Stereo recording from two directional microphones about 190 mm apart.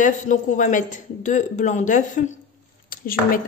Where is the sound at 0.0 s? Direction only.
40° left (ahead or behind).